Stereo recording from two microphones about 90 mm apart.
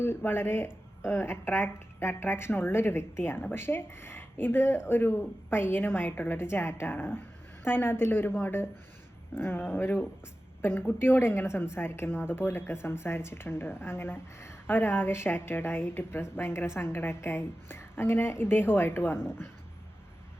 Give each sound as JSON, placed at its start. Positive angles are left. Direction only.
{"t": 0.0, "sound": "a woman's voice", "side_deg": 25}